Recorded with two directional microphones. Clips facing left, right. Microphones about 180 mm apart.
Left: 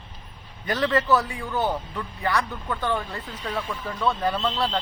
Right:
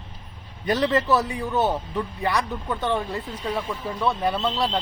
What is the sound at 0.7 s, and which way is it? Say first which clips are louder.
A man's voice: right 1 dB; 20° right (ahead or behind).